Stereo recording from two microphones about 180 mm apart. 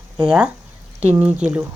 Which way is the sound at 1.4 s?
10° right (ahead or behind).